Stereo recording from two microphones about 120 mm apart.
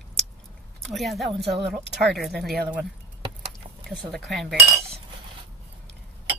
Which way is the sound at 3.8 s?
Centre (ahead or behind).